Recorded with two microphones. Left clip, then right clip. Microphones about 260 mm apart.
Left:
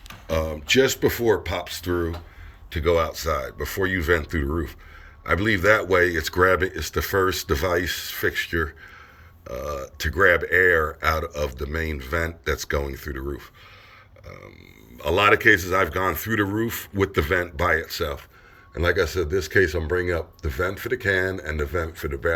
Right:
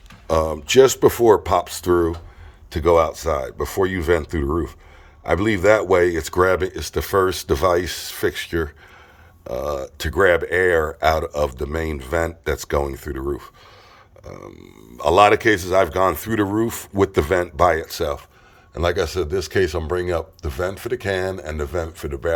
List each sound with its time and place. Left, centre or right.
0.7 s speech: centre
10.0 s speech: centre
14.9 s speech: centre